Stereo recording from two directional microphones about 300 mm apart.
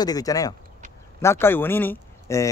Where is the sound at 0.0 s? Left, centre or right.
Centre.